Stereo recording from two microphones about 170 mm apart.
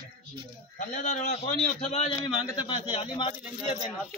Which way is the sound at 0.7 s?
50° left (ahead or behind).